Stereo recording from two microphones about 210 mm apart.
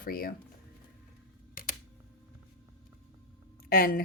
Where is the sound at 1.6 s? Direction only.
45° left (ahead or behind).